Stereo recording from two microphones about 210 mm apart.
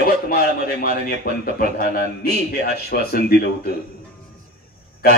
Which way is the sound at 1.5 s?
45° left (ahead or behind).